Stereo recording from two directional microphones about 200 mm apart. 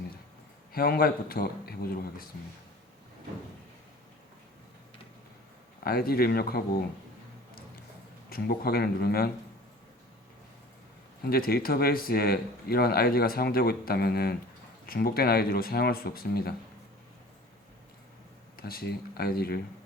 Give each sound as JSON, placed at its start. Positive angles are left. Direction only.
{"t": 0.7, "sound": "speech", "side_deg": 50}
{"t": 5.8, "sound": "speech", "side_deg": 50}
{"t": 8.3, "sound": "speech", "side_deg": 50}
{"t": 11.2, "sound": "speech", "side_deg": 50}
{"t": 18.5, "sound": "speech", "side_deg": 50}